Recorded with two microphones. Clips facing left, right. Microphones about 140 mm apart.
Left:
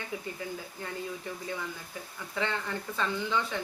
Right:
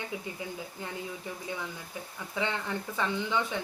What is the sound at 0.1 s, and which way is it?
Speech, 20° right (ahead or behind).